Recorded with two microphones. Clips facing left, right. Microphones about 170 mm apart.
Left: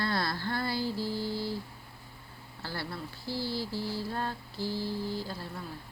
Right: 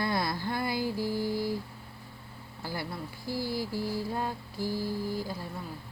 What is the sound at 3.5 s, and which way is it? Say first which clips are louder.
Music: right 2 dB; 15° right (ahead or behind).